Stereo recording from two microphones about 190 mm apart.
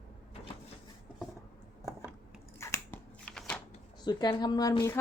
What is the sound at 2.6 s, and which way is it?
Scissors, 15° left (ahead or behind).